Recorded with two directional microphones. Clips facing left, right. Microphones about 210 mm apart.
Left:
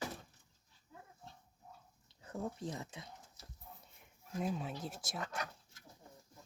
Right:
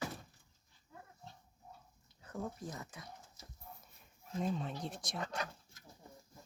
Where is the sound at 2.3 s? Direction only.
25° left (ahead or behind).